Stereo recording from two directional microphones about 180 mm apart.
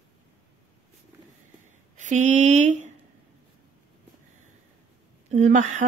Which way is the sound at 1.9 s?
45° right (ahead or behind).